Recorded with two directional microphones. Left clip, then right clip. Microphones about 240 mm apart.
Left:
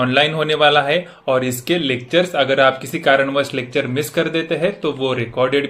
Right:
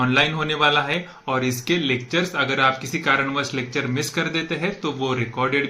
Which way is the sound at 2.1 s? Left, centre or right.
Centre.